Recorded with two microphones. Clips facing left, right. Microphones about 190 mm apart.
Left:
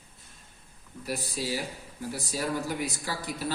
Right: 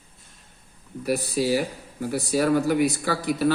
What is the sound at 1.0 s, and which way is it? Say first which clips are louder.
Speech: right 10 dB; 65° right (ahead or behind).